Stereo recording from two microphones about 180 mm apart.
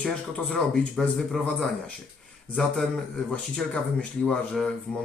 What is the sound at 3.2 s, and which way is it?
Speech, centre (ahead or behind).